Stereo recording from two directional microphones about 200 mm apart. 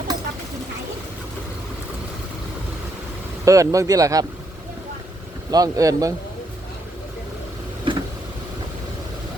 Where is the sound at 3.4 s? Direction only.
15° right (ahead or behind).